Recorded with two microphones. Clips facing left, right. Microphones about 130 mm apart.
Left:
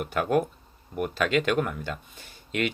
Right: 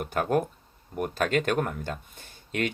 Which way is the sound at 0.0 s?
40° right (ahead or behind).